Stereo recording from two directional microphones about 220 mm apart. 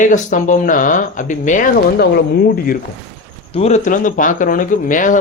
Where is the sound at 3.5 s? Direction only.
30° left (ahead or behind).